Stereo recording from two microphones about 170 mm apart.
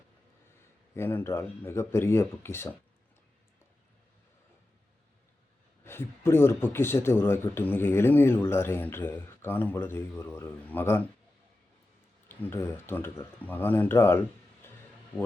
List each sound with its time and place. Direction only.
0.9 s a man's voice: 15° left (ahead or behind)
5.8 s a man's voice: 15° left (ahead or behind)
12.3 s a man's voice: 15° left (ahead or behind)
14.6 s music: 15° left (ahead or behind)